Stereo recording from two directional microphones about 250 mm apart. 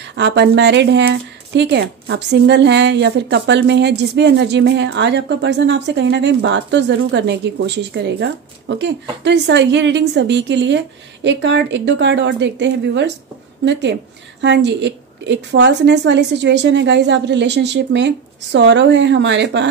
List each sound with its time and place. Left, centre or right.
0.2 s speech: right